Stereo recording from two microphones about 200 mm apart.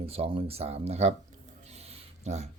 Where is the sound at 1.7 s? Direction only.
30° right (ahead or behind).